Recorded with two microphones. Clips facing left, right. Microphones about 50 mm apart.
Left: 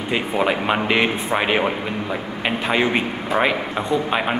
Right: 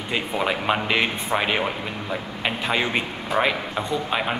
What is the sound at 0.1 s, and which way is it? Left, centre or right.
Speech, centre.